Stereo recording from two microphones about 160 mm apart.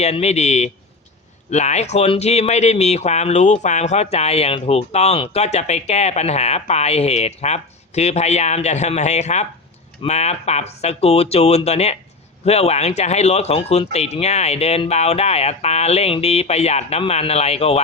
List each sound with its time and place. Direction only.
0.0 s speech: 45° left (ahead or behind)